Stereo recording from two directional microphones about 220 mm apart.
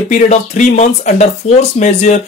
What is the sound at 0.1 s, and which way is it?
Speech, 35° left (ahead or behind).